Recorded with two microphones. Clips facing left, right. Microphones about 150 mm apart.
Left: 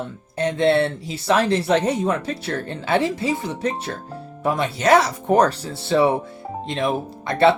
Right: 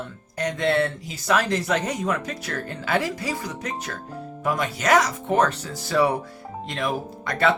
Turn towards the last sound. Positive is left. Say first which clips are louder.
# left 5 dB
turn(degrees=25)  # may be behind; listen again after turning